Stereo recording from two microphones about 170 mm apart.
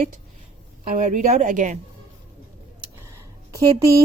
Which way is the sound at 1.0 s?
45° right (ahead or behind).